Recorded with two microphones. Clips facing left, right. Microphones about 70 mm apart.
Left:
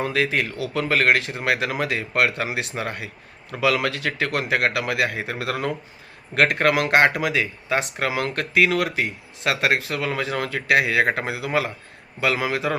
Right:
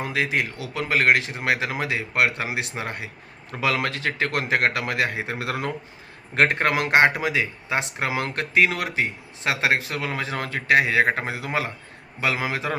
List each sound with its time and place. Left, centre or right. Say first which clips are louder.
0.0 s speech: left 2 dB; centre